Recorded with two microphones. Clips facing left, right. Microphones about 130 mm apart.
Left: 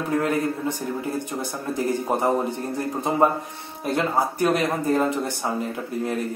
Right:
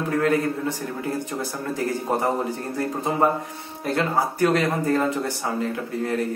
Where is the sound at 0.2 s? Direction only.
20° left (ahead or behind).